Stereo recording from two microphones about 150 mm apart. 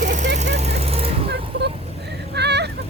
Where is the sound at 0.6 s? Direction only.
40° right (ahead or behind).